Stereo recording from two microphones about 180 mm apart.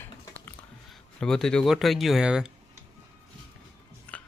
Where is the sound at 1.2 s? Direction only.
5° left (ahead or behind).